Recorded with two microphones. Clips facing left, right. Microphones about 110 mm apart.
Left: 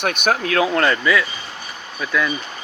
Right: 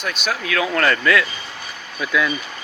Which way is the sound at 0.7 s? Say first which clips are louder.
Left 1 dB; 20° left (ahead or behind).